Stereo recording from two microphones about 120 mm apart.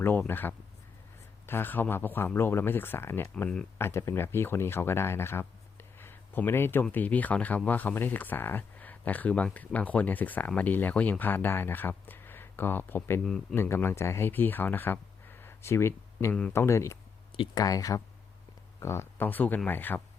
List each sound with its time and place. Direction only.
0.0 s speech: 15° left (ahead or behind)
3.3 s speech: 10° left (ahead or behind)
3.8 s speech: 20° left (ahead or behind)
6.0 s a sound: 20° left (ahead or behind)
6.8 s speech: 15° left (ahead or behind)
13.2 s a man's voice: 5° left (ahead or behind)
13.6 s speech: 20° left (ahead or behind)